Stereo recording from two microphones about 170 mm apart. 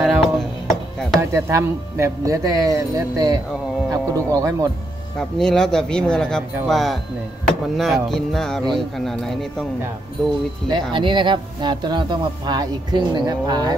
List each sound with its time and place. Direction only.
0.0 s music: centre (ahead or behind)
1.3 s speech: 15° right (ahead or behind)
5.4 s speech: 5° left (ahead or behind)
10.7 s speech: 30° right (ahead or behind)